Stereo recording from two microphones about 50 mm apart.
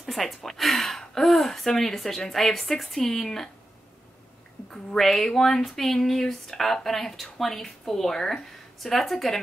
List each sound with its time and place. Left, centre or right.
0.0 s speech: centre
4.9 s speech: centre